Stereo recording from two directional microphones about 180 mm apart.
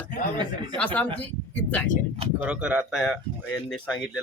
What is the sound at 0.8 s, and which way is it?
Speech, 10° left (ahead or behind).